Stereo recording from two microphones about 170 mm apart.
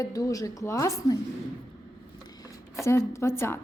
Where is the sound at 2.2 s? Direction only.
20° left (ahead or behind).